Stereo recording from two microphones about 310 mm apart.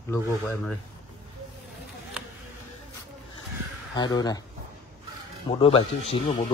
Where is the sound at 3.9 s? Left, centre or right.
Centre.